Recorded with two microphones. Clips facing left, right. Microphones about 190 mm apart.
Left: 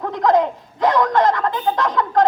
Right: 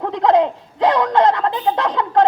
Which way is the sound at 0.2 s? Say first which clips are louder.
Right 1 dB; 30° right (ahead or behind).